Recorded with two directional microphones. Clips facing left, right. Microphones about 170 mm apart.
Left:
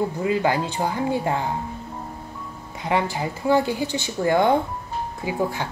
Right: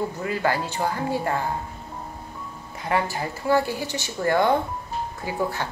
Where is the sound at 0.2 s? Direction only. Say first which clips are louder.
Left 4 dB; 15° left (ahead or behind).